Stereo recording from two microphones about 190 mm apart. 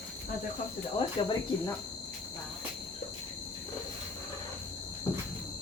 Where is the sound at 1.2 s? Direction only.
25° left (ahead or behind).